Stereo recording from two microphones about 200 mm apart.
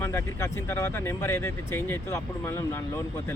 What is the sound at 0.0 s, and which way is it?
Speech, 15° left (ahead or behind).